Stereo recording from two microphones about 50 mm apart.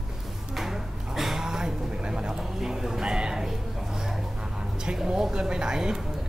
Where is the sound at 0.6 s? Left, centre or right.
Centre.